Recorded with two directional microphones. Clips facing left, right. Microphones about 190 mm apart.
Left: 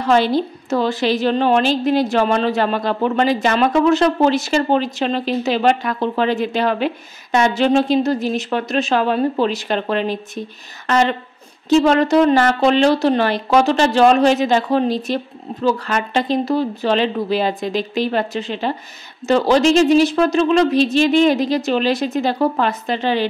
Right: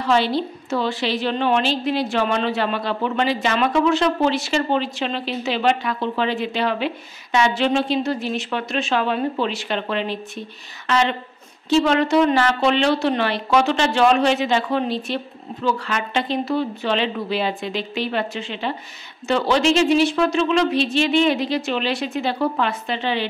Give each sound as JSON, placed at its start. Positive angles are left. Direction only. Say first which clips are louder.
{"t": 0.0, "sound": "a woman's voice", "louder": "left 4 dB", "side_deg": 45}